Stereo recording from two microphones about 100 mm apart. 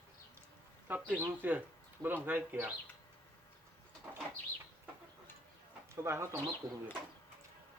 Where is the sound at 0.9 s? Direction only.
20° right (ahead or behind).